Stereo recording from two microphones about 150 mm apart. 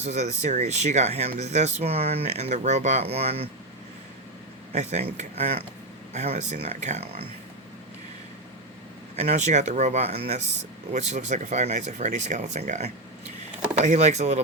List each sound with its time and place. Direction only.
0.0 s speech: 50° right (ahead or behind)
4.7 s speech: 50° right (ahead or behind)
9.1 s speech: 45° right (ahead or behind)